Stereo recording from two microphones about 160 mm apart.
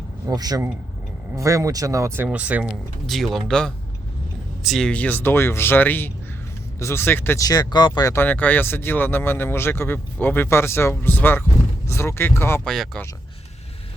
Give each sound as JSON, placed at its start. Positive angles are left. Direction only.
{"t": 0.3, "sound": "speech", "side_deg": -25}
{"t": 12.6, "sound": "speech", "side_deg": 5}